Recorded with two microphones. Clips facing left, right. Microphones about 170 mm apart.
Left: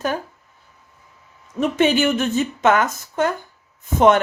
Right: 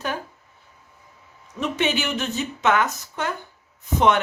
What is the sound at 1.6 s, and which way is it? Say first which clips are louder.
Speech: left 7 dB; 45° left (ahead or behind).